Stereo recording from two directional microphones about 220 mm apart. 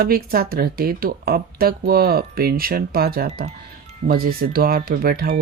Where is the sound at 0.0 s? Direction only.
40° right (ahead or behind).